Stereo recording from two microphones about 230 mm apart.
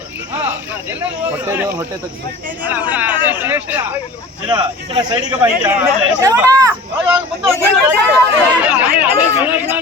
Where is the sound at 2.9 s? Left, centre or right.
Centre.